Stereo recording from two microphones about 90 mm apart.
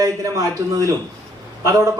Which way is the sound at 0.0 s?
45° right (ahead or behind).